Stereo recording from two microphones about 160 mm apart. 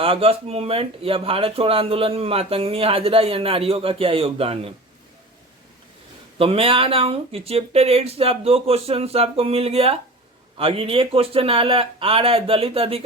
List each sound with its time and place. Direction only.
0.0 s speech: 35° right (ahead or behind)
6.4 s speech: 35° right (ahead or behind)